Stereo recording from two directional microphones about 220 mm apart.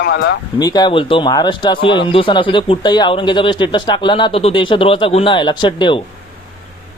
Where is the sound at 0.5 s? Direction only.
20° left (ahead or behind).